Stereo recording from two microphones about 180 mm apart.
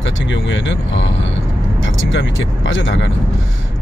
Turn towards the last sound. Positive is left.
turn(degrees=90)